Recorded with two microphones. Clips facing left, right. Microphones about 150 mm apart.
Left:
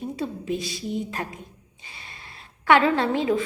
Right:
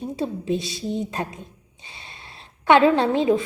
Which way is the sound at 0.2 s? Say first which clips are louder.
Right 5 dB; 25° right (ahead or behind).